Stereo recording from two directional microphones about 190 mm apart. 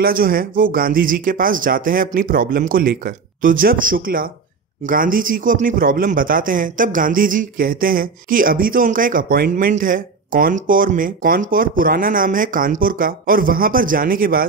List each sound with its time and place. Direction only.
0.0 s speech: 50° right (ahead or behind)